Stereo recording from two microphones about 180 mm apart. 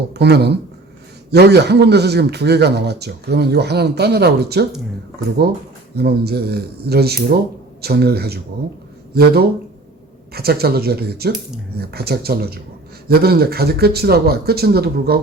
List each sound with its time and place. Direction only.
0.1 s speech: 65° right (ahead or behind)
6.0 s speech: 60° right (ahead or behind)